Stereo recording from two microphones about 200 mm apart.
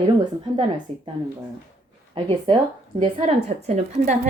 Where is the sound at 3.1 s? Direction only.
30° right (ahead or behind).